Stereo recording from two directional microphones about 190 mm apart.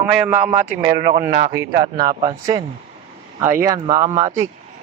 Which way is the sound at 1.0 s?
50° right (ahead or behind).